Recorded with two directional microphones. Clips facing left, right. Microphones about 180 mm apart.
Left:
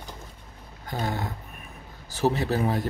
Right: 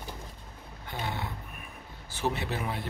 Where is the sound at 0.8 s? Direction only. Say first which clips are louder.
Left 6 dB; 40° left (ahead or behind).